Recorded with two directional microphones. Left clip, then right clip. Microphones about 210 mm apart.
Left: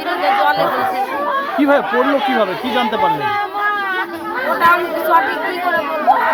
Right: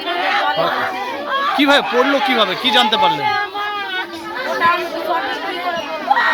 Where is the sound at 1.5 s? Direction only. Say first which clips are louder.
Right 1 dB; 10° right (ahead or behind).